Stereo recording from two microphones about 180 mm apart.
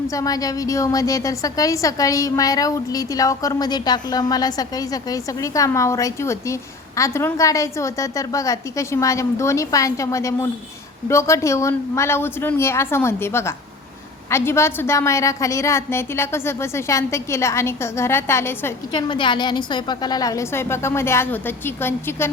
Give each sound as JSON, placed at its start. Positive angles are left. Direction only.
{"t": 0.1, "sound": "a woman's voice", "side_deg": 20}
{"t": 18.9, "sound": "a woman's voice", "side_deg": 25}